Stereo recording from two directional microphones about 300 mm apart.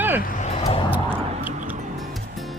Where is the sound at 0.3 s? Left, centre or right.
Left.